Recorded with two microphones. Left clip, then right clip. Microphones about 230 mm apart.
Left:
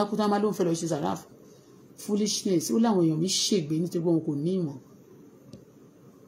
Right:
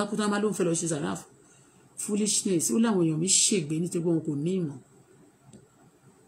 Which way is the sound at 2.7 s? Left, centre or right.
Right.